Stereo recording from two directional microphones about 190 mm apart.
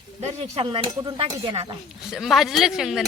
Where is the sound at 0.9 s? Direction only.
20° right (ahead or behind).